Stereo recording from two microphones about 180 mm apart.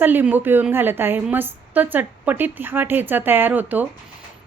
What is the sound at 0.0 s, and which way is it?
A woman's voice, 10° right (ahead or behind).